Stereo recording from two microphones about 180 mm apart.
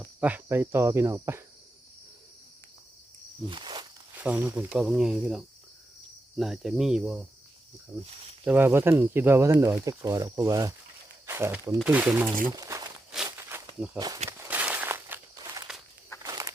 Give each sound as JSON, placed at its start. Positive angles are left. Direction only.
{"t": 0.0, "sound": "speech", "side_deg": -10}
{"t": 3.5, "sound": "walk", "side_deg": -25}
{"t": 4.2, "sound": "speech", "side_deg": -10}
{"t": 8.4, "sound": "speech", "side_deg": -10}
{"t": 12.5, "sound": "walk", "side_deg": -20}